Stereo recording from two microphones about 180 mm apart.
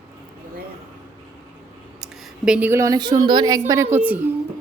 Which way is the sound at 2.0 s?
5° right (ahead or behind).